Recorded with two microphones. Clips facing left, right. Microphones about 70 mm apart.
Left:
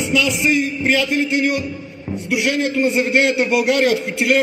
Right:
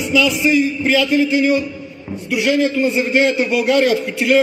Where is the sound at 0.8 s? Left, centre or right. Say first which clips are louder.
Right 1 dB; left.